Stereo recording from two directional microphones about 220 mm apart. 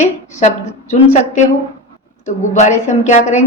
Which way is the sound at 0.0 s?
30° left (ahead or behind).